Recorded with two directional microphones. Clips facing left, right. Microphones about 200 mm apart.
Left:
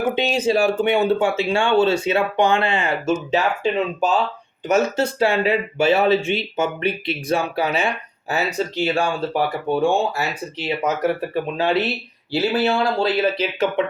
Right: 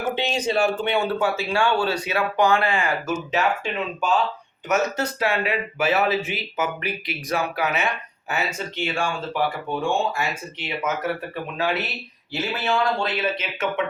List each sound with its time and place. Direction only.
0.1 s speech: 10° left (ahead or behind)
1.0 s speech: 25° left (ahead or behind)